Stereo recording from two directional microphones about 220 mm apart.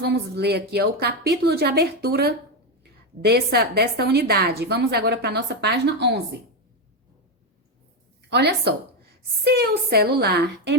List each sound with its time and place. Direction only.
0.0 s a woman's voice: 50° right (ahead or behind)
8.3 s a woman's voice: 50° right (ahead or behind)